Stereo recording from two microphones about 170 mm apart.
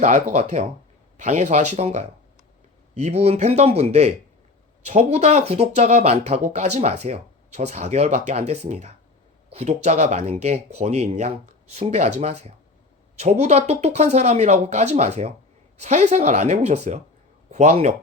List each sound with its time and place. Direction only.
0.0 s speech: 40° right (ahead or behind)